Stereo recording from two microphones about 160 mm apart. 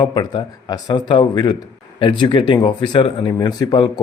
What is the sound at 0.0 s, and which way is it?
Speech, 30° left (ahead or behind).